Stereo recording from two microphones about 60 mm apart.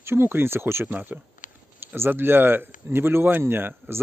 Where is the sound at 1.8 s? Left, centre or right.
Right.